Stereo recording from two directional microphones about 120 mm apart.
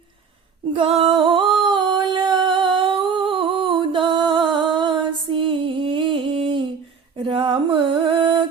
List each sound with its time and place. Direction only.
0.7 s music: 50° right (ahead or behind)
7.2 s mantra: 45° right (ahead or behind)